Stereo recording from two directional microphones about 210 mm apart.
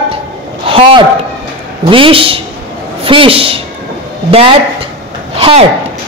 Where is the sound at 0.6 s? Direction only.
25° right (ahead or behind).